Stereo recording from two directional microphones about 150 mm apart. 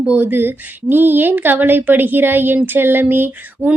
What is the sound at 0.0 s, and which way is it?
Speech, 10° right (ahead or behind).